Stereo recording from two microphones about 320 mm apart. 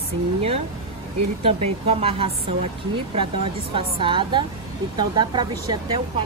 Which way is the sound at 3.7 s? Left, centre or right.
Centre.